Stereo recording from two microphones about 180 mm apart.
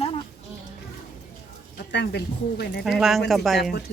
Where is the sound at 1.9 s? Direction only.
70° left (ahead or behind).